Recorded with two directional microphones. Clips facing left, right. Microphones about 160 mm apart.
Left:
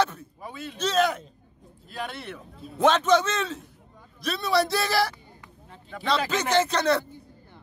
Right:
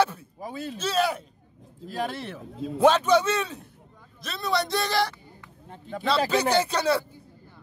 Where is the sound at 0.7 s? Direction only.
10° right (ahead or behind).